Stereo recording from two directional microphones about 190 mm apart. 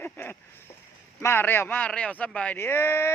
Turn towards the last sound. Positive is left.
turn(degrees=15)  # may be behind; listen again after turning